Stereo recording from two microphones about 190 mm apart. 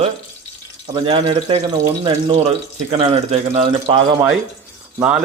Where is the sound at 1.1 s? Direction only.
30° right (ahead or behind).